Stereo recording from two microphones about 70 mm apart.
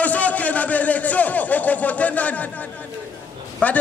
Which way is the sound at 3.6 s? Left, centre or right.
Left.